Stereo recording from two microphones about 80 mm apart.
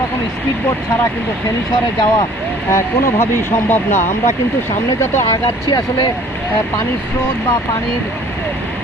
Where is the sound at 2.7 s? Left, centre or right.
Left.